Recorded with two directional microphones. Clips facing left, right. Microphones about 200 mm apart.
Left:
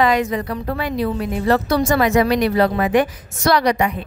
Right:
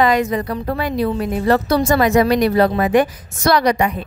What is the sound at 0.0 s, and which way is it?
A woman's voice, 40° right (ahead or behind).